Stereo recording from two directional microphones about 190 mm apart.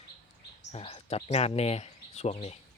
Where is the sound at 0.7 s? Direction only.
30° left (ahead or behind).